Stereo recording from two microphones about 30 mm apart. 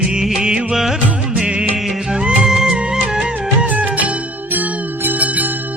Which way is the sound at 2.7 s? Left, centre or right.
Right.